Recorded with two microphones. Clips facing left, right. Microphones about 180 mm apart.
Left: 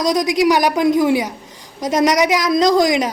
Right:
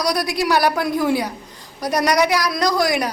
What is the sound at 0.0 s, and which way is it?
A woman's voice, 20° left (ahead or behind).